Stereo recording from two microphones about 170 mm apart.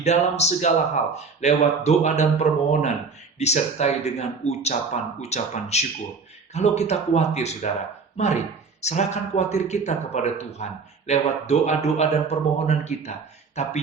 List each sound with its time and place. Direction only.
0.0 s a man's voice: 40° left (ahead or behind)